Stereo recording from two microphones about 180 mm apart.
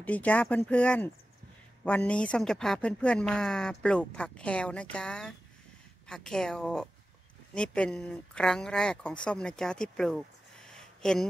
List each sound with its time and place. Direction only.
0.0 s speech: 10° left (ahead or behind)